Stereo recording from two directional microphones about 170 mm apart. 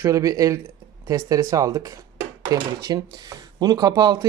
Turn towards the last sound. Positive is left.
turn(degrees=-20)  # may be behind; listen again after turning